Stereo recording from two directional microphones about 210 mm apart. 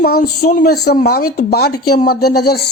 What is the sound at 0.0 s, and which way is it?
Speech, 45° left (ahead or behind).